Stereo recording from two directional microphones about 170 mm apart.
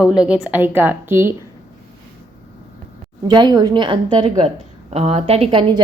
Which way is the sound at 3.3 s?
25° right (ahead or behind).